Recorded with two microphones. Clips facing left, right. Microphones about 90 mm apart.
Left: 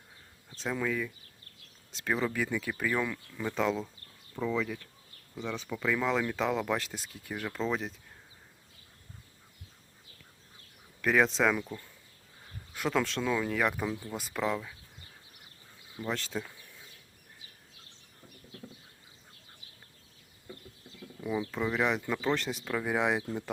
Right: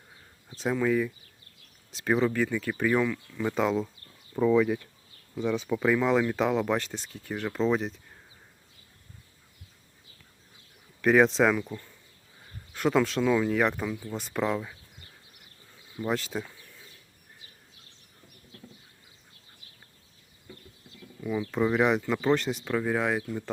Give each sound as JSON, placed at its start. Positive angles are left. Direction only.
{"t": 0.6, "sound": "speech", "side_deg": -10}
{"t": 3.4, "sound": "speech", "side_deg": -5}
{"t": 4.4, "sound": "speech", "side_deg": -40}
{"t": 4.6, "sound": "speech", "side_deg": -20}
{"t": 6.0, "sound": "speech", "side_deg": -5}
{"t": 11.0, "sound": "speech", "side_deg": 0}
{"t": 16.0, "sound": "speech", "side_deg": -5}
{"t": 21.2, "sound": "speech", "side_deg": 15}
{"t": 21.7, "sound": "speech", "side_deg": -5}
{"t": 22.9, "sound": "speech", "side_deg": 15}